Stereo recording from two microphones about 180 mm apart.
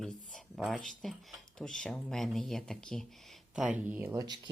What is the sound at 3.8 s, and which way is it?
Speech, 10° right (ahead or behind).